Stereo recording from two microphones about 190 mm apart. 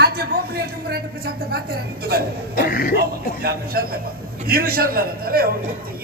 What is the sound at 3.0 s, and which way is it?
A man's voice, 55° right (ahead or behind).